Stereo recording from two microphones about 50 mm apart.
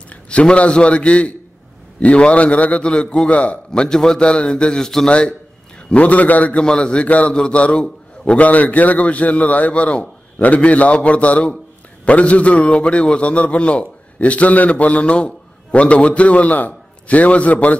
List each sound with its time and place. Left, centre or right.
0.1 s a man's voice: left
5.9 s a man's voice: left
6.5 s a man's voice: centre